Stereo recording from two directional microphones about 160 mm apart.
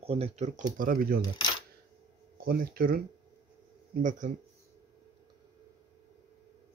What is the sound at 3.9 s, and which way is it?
Speech, 55° right (ahead or behind).